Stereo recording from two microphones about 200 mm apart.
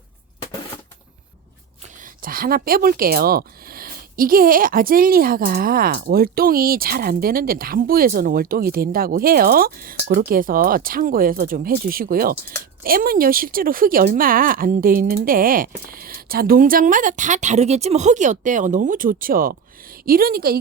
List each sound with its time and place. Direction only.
2.0 s speech: 45° right (ahead or behind)